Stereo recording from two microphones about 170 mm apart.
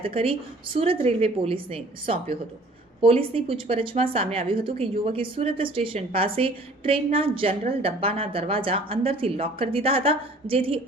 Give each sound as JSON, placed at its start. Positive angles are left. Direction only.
{"t": 0.0, "sound": "a woman's voice", "side_deg": -35}